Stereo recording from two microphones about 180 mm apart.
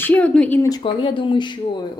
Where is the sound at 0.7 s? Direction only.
25° left (ahead or behind).